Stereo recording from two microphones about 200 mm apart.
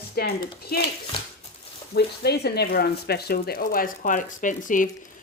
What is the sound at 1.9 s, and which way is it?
Speech, 55° left (ahead or behind).